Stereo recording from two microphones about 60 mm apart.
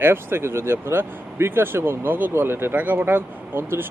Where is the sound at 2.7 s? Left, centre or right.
Right.